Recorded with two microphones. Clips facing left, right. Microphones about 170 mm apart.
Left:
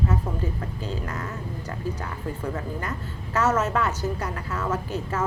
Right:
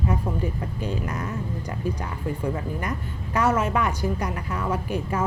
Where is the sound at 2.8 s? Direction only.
15° right (ahead or behind).